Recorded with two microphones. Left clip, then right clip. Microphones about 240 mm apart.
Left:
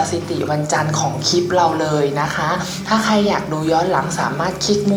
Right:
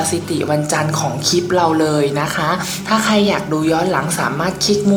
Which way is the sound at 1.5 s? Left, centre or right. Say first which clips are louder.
Right 2 dB; right.